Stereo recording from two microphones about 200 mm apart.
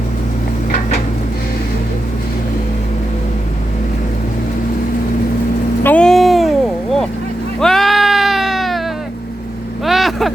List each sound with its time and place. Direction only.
5.8 s vehicle: 5° left (ahead or behind)
7.6 s sheep: centre (ahead or behind)
9.8 s vehicle: centre (ahead or behind)